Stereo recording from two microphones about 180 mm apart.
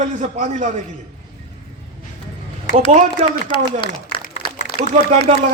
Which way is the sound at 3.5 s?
30° left (ahead or behind).